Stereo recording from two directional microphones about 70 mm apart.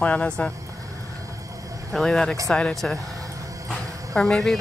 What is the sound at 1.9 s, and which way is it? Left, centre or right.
Speech, centre.